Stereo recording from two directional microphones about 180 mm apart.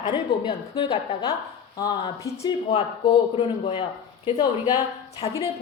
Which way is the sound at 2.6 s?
30° left (ahead or behind).